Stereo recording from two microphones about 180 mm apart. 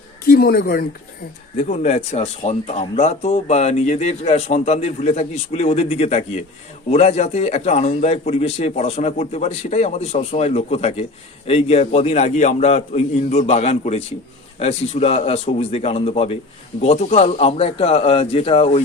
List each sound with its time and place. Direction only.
0.3 s speech: 55° left (ahead or behind)
1.6 s speech: 40° left (ahead or behind)